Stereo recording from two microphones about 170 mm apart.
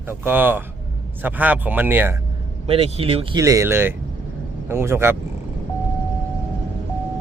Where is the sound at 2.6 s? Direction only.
35° right (ahead or behind).